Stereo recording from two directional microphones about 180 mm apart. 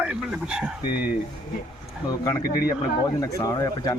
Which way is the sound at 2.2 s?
15° left (ahead or behind).